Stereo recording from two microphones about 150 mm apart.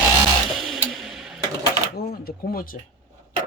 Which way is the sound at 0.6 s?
Centre (ahead or behind).